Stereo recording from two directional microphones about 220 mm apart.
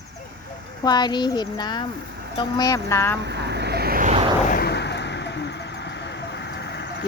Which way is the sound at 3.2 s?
50° right (ahead or behind).